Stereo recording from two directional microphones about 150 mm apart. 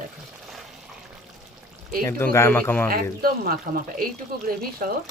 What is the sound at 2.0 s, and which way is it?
Speech, 15° left (ahead or behind).